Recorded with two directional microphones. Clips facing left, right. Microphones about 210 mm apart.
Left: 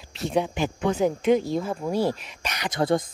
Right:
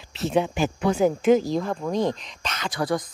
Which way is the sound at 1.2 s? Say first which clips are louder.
Right 2 dB; centre (ahead or behind).